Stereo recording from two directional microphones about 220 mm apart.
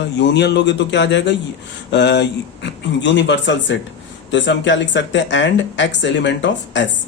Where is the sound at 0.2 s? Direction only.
50° left (ahead or behind).